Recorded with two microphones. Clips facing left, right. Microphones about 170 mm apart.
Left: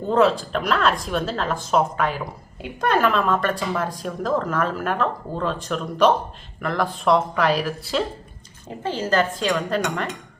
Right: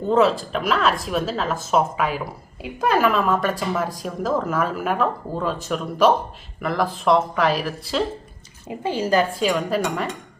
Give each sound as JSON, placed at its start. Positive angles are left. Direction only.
{"t": 0.1, "sound": "a woman's voice", "side_deg": 0}
{"t": 8.8, "sound": "speech", "side_deg": -10}